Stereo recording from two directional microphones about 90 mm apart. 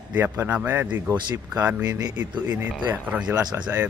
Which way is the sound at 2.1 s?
20° right (ahead or behind).